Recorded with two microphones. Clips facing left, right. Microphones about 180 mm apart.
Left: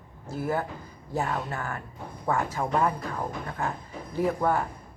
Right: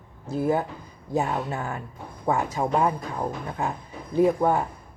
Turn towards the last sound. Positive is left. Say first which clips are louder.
# right 5 dB
turn(degrees=-20)  # may be behind; listen again after turning